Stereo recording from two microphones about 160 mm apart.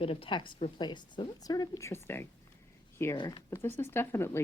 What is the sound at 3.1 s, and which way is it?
Speech, 30° left (ahead or behind).